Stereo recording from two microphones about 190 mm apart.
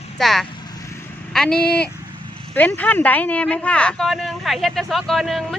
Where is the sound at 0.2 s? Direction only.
Centre (ahead or behind).